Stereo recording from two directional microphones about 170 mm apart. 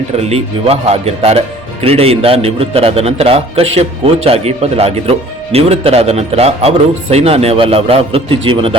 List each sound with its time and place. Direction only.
0.2 s speech: 35° right (ahead or behind)